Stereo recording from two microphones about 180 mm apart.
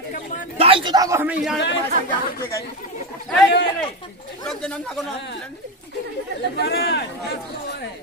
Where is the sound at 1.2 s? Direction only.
5° right (ahead or behind).